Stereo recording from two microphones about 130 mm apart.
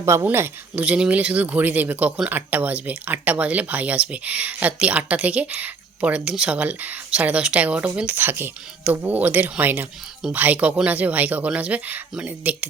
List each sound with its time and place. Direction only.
0.0 s speech: 20° right (ahead or behind)